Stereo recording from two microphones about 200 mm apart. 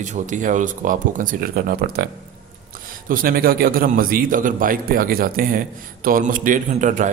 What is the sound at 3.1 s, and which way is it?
A man's voice, 45° right (ahead or behind).